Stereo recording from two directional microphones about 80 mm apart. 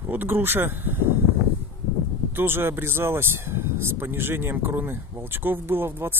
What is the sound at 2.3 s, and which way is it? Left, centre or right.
Speech, right.